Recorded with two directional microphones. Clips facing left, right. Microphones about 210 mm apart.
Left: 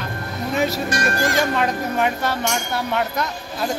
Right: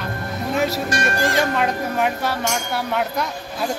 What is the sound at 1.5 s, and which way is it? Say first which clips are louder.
Speech: even; 5° right (ahead or behind).